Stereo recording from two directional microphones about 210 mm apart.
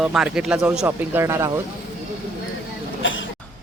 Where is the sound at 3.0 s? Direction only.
65° left (ahead or behind).